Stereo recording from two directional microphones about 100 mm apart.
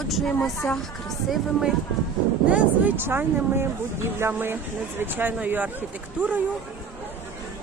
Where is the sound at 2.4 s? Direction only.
15° right (ahead or behind).